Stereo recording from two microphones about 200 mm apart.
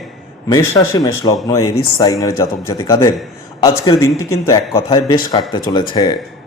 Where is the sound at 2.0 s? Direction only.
15° left (ahead or behind).